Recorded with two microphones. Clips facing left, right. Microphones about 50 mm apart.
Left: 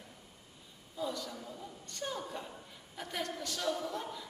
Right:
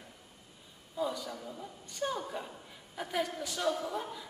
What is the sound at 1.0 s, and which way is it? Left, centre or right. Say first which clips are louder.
A woman's voice: right 3 dB; centre.